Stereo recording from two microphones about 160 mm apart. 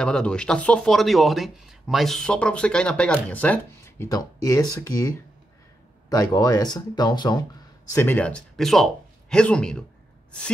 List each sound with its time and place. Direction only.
0.0 s speech: 5° left (ahead or behind); by 7.3 s 25° left (ahead or behind)
7.9 s speech: 15° left (ahead or behind)